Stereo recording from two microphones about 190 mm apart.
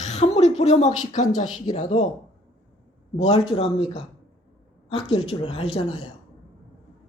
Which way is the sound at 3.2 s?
30° left (ahead or behind).